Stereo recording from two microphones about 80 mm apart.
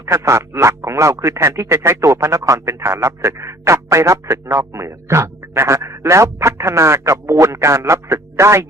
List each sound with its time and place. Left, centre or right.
0.0 s speech: right